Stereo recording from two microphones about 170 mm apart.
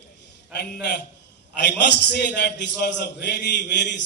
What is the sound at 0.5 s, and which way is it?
A man's voice, 75° left (ahead or behind).